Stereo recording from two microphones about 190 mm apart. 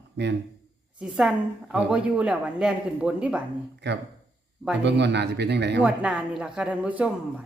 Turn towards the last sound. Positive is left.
turn(degrees=-10)  # may be behind; listen again after turning